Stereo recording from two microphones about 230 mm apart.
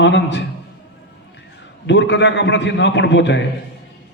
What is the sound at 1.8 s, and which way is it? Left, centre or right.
A man's voice, left.